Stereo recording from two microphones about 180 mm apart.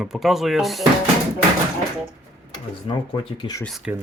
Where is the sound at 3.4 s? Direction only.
20° left (ahead or behind).